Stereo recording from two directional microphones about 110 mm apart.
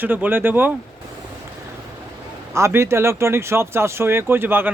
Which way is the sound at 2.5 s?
25° right (ahead or behind).